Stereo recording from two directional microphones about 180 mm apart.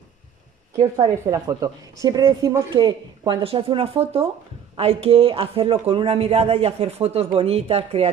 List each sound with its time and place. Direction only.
0.7 s speech: 20° right (ahead or behind); by 8.1 s 35° right (ahead or behind)